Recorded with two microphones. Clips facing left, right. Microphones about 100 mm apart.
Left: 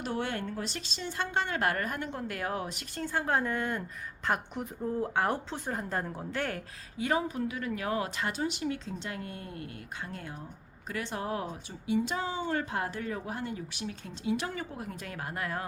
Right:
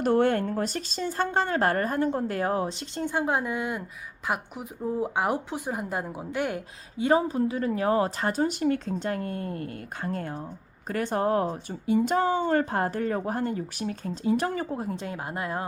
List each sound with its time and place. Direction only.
0.0 s speech: 50° right (ahead or behind); by 3.0 s 30° right (ahead or behind)
3.0 s speech: 15° right (ahead or behind)
7.0 s a woman's voice: 30° right (ahead or behind)